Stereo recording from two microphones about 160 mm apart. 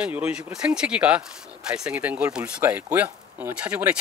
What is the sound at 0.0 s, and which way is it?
Speech, 10° right (ahead or behind).